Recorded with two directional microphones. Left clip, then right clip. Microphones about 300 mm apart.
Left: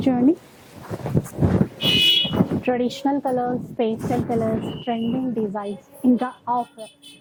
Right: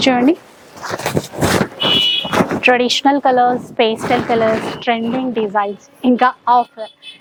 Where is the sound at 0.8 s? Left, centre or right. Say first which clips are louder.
Right 9 dB; centre.